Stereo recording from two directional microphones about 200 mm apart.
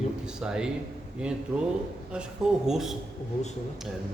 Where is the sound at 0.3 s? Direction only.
5° right (ahead or behind).